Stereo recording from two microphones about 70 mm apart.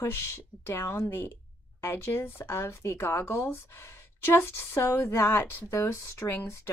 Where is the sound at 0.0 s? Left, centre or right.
Left.